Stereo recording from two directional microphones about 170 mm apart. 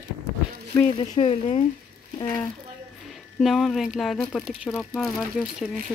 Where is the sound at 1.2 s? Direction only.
35° left (ahead or behind).